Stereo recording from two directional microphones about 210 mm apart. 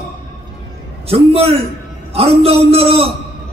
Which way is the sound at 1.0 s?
30° right (ahead or behind).